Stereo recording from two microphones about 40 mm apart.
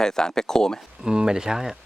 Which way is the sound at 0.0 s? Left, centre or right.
Centre.